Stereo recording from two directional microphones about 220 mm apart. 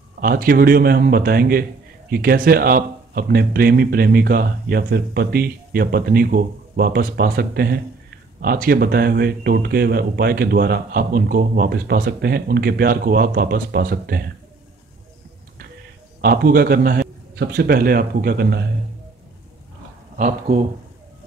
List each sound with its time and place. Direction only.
0.2 s a man's voice: 40° right (ahead or behind)
16.2 s a man's voice: 40° right (ahead or behind)
20.2 s speech: 35° right (ahead or behind)